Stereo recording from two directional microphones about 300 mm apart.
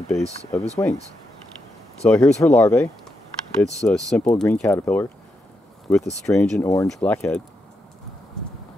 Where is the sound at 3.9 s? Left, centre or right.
Centre.